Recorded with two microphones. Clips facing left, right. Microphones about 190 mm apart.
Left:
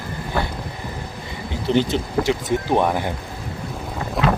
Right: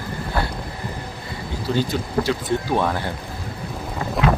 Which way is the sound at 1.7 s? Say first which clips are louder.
Left 4 dB; 20° left (ahead or behind).